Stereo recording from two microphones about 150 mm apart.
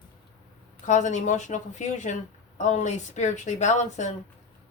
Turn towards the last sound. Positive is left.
turn(degrees=50)  # may be behind; listen again after turning